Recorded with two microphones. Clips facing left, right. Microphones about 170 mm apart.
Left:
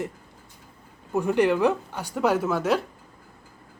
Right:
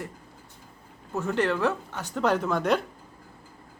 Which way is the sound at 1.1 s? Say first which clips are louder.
Left 5 dB; 15° left (ahead or behind).